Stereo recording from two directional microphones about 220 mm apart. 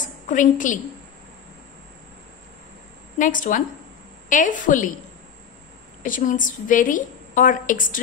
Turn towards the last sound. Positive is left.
turn(degrees=35)  # may be behind; listen again after turning